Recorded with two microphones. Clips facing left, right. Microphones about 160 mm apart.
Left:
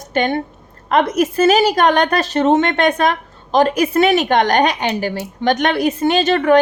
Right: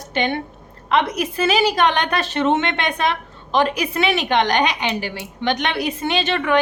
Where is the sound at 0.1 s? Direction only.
45° left (ahead or behind).